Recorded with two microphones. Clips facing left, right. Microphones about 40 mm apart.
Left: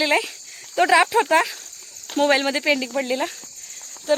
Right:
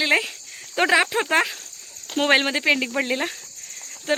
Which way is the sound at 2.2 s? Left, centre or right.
Right.